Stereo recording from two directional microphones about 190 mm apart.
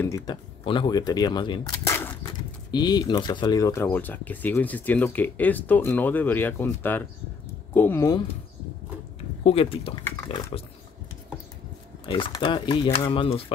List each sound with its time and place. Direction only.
0.0 s speech: 15° left (ahead or behind)
9.4 s speech: 30° left (ahead or behind)
12.1 s speech: 25° left (ahead or behind)